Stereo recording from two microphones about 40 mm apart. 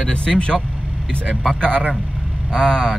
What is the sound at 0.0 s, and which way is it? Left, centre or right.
Speech, left.